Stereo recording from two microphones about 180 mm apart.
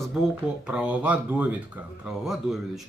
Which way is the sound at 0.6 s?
5° right (ahead or behind).